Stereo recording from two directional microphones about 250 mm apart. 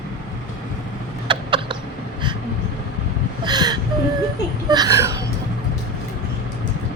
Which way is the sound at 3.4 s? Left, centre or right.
Centre.